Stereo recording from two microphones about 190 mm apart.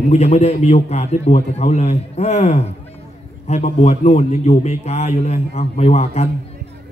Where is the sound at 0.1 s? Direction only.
35° left (ahead or behind).